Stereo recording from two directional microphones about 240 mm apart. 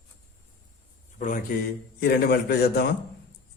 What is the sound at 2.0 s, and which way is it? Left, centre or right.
Speech, left.